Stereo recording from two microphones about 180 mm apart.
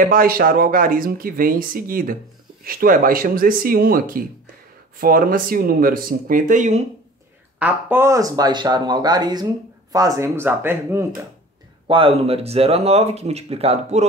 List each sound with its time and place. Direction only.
0.1 s speech: 55° right (ahead or behind)
7.5 s speech: 10° right (ahead or behind)
11.9 s speech: 30° right (ahead or behind)